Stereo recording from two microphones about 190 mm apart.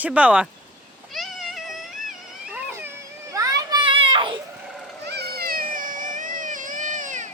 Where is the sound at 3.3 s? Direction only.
20° right (ahead or behind).